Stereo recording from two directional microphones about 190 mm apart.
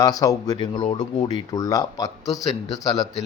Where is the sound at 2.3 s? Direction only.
Centre (ahead or behind).